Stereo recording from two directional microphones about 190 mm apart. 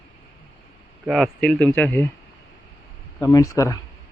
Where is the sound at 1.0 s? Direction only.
Centre (ahead or behind).